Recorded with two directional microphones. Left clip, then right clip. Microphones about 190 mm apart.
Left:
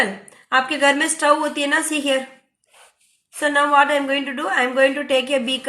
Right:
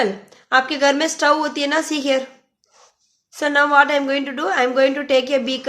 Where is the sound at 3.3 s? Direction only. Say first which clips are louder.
Right 1 dB; 35° right (ahead or behind).